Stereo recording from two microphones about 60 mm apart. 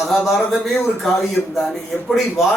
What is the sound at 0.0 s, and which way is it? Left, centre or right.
Speech, centre.